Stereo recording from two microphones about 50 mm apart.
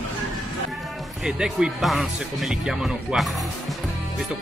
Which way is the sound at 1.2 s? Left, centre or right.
Centre.